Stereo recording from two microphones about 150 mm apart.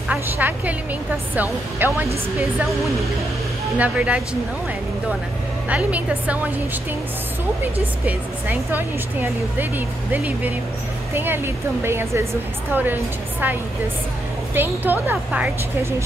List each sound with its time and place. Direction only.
0.1 s speech: 10° right (ahead or behind)
3.7 s speech: 10° right (ahead or behind)
5.7 s speech: 10° right (ahead or behind)
8.0 s speech: 10° right (ahead or behind)